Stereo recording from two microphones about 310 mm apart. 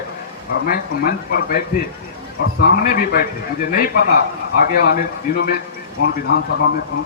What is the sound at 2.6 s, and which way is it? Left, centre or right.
A man's voice, left.